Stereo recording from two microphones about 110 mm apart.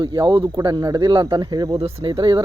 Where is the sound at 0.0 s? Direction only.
40° right (ahead or behind).